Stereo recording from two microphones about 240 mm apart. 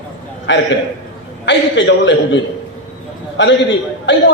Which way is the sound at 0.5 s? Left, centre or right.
Left.